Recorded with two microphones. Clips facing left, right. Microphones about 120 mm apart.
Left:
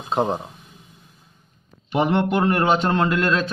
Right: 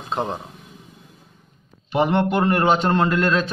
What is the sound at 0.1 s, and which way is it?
Speech, 10° left (ahead or behind).